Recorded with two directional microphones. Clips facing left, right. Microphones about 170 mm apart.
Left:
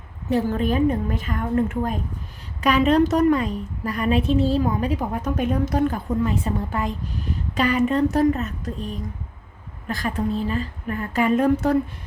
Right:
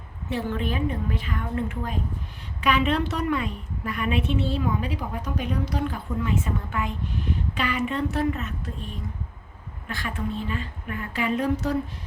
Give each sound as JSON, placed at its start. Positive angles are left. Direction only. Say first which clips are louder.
{"t": 0.3, "sound": "a woman's voice", "louder": "left 7 dB", "side_deg": 40}